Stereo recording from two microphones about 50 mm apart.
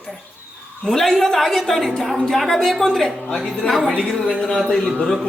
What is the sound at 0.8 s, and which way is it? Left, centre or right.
A woman's voice, centre.